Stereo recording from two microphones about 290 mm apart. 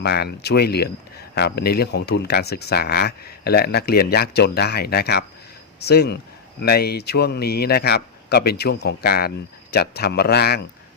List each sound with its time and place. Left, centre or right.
0.0 s speech: left